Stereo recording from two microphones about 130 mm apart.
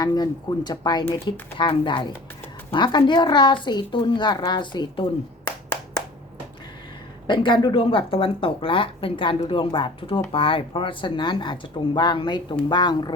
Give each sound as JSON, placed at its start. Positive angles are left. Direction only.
{"t": 0.0, "sound": "a woman's voice", "side_deg": 30}
{"t": 7.3, "sound": "a woman's voice", "side_deg": 35}